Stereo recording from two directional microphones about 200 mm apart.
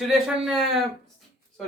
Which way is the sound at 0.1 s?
Centre (ahead or behind).